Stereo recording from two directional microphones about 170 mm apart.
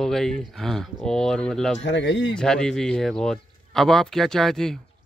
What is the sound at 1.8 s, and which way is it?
Speech, 90° left.